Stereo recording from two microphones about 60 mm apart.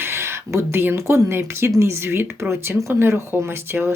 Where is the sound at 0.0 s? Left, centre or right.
Right.